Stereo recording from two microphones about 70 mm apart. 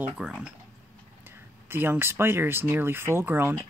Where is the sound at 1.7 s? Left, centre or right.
Right.